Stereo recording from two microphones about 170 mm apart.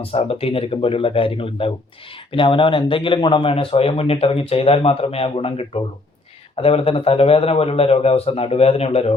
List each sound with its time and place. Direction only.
0.0 s speech: 35° left (ahead or behind)